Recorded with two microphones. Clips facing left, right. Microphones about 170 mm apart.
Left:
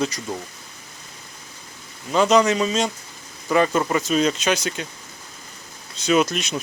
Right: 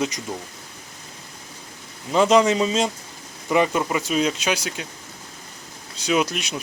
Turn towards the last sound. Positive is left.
turn(degrees=-10)  # may be behind; listen again after turning